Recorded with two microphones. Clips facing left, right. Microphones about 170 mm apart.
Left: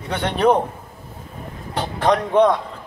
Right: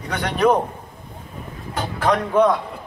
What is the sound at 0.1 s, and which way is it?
Speech, 30° left (ahead or behind).